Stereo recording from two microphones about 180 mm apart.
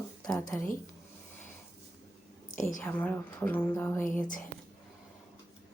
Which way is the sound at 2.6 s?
45° left (ahead or behind).